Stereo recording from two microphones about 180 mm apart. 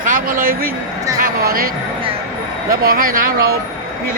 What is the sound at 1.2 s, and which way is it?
Music, 55° right (ahead or behind).